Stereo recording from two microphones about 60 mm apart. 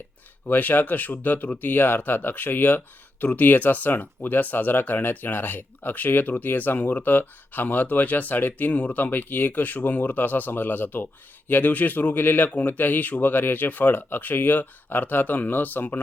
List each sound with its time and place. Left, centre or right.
0.4 s speech: left